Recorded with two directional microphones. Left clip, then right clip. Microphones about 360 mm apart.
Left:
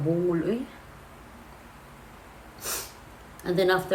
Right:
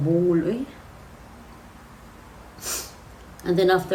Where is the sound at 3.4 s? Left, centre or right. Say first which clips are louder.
Right 4 dB; centre.